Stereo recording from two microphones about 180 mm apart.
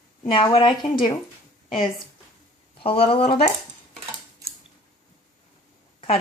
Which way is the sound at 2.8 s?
30° left (ahead or behind).